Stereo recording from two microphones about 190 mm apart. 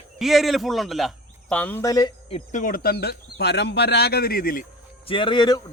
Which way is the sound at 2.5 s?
45° left (ahead or behind).